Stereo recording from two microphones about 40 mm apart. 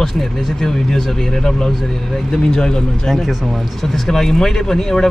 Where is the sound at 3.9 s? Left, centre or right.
Centre.